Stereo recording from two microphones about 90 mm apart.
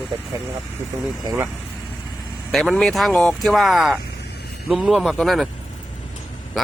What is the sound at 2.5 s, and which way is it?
Speech, 5° left (ahead or behind).